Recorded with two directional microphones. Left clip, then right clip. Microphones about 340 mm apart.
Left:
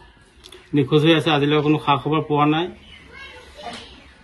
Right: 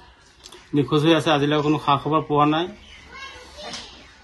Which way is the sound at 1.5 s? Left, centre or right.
Centre.